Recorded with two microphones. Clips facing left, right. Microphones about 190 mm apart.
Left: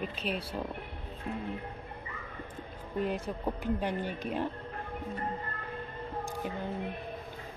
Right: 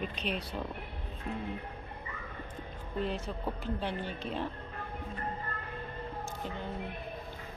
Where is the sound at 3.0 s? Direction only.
15° left (ahead or behind).